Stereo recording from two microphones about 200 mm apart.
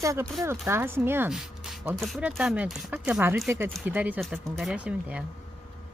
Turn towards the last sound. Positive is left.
turn(degrees=-5)  # may be behind; listen again after turning